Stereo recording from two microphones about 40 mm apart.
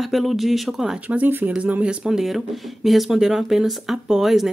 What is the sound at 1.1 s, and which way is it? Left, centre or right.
Speech, right.